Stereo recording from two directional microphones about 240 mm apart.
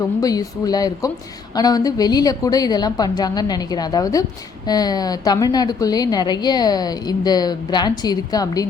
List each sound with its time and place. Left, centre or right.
0.2 s a woman's voice: centre